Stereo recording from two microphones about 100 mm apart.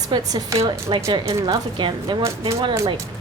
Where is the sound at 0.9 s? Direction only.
55° right (ahead or behind).